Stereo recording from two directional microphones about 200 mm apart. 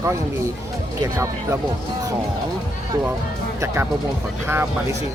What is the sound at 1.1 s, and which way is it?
Speech, 15° right (ahead or behind).